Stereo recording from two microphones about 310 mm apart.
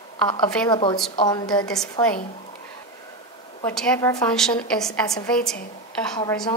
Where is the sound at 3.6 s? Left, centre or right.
Centre.